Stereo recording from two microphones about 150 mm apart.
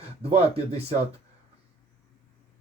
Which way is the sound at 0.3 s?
40° right (ahead or behind).